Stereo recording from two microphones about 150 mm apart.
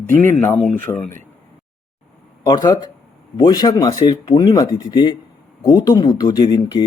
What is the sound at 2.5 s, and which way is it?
Speech, 25° left (ahead or behind).